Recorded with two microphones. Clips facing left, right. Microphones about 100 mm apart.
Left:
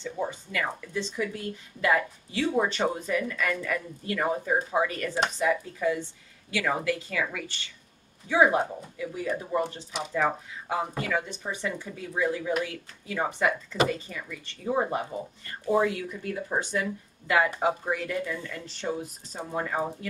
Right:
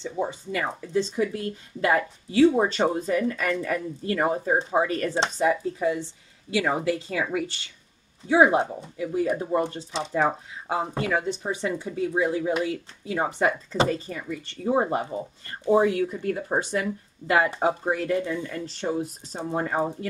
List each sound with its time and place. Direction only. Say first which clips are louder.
0.0 s speech: right 3 dB; 25° right (ahead or behind)
16.0 s speech: right 7 dB; 40° right (ahead or behind)